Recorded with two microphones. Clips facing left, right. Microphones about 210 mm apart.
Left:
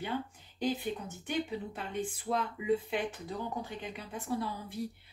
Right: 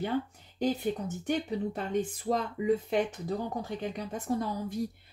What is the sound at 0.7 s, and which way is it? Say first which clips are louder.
Speech: right 4 dB; 40° right (ahead or behind).